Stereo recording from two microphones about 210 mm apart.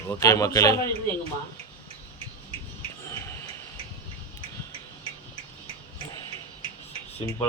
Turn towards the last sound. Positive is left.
turn(degrees=20)  # may be behind; listen again after turning